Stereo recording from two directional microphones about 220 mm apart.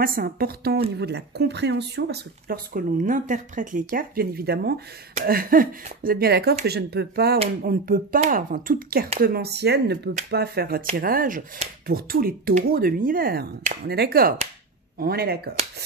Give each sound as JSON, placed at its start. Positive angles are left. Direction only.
{"t": 0.0, "sound": "a woman's voice", "side_deg": -40}